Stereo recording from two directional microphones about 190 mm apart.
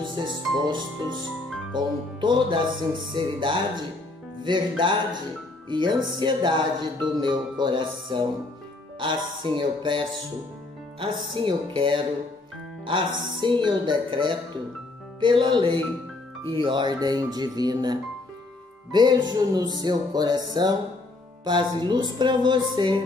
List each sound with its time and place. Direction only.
0.1 s speech: 25° right (ahead or behind)
13.3 s speech: 25° right (ahead or behind)